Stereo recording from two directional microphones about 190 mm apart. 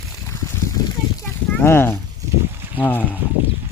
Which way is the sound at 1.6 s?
15° left (ahead or behind).